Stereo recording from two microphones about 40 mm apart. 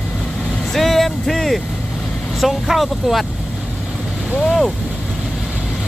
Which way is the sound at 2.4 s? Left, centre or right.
Centre.